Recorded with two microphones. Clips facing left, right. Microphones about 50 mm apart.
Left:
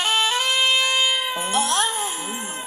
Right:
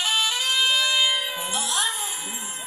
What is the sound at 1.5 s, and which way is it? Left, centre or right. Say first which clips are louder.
Music: left 6 dB; left.